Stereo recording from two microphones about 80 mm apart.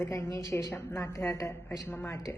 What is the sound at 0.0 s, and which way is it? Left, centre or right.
A woman's voice, left.